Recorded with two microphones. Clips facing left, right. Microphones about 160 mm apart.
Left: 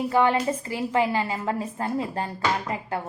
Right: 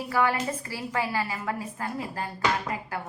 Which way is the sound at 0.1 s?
25° left (ahead or behind).